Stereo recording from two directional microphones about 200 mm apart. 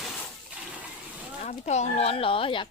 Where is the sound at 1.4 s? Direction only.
35° left (ahead or behind).